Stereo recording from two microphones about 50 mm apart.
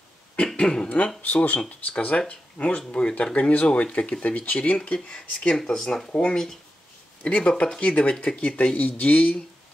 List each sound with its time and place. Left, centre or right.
0.6 s speech: centre
0.8 s speech: left
5.5 s speech: centre
6.1 s speech: left